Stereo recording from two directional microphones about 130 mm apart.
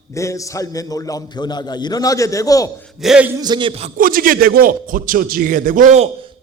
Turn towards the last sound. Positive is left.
turn(degrees=-70)  # may be behind; listen again after turning